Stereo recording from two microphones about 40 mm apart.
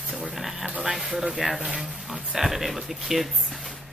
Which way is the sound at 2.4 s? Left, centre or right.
Centre.